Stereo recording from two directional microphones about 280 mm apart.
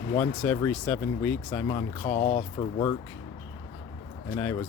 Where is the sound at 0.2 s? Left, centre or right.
Centre.